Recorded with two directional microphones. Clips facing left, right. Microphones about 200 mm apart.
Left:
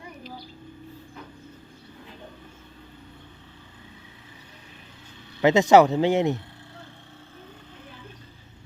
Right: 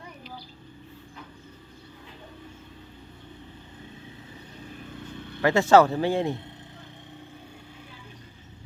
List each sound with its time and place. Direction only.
5.4 s speech: 20° left (ahead or behind)